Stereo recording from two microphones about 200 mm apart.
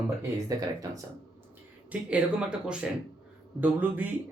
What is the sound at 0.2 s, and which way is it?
Speech, 15° right (ahead or behind).